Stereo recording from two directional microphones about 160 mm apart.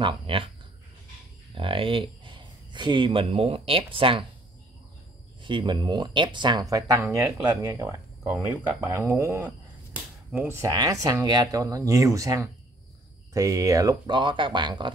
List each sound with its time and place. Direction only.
0.0 s speech: 35° right (ahead or behind)
1.5 s speech: 35° right (ahead or behind)
5.4 s speech: 30° right (ahead or behind)